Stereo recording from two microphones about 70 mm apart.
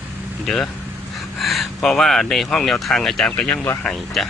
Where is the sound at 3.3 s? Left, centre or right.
Centre.